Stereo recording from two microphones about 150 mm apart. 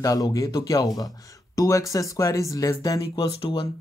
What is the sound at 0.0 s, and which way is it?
Speech, 25° left (ahead or behind).